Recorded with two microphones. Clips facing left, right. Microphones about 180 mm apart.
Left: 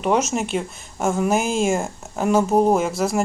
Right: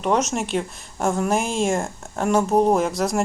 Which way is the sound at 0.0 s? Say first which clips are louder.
Left 1 dB; centre (ahead or behind).